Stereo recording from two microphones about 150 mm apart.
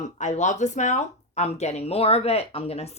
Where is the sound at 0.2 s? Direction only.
55° left (ahead or behind).